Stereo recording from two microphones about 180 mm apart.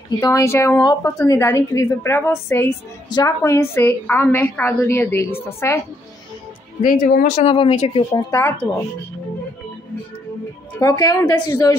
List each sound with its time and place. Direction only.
0.2 s a woman's voice: 15° left (ahead or behind)
6.8 s speech: 50° left (ahead or behind)
7.4 s speech: 35° left (ahead or behind)
8.1 s a woman's voice: 15° left (ahead or behind)
10.8 s a woman's voice: 20° left (ahead or behind)